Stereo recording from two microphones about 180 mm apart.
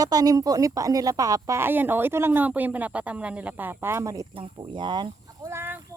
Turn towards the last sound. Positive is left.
turn(degrees=-15)  # may be behind; listen again after turning